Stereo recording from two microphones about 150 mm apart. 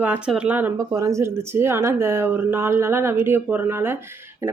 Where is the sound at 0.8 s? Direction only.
20° right (ahead or behind).